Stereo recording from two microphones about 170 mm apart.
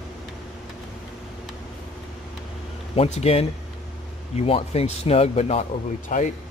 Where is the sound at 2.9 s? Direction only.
40° left (ahead or behind).